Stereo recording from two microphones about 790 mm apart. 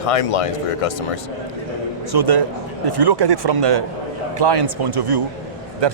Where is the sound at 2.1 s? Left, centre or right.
Right.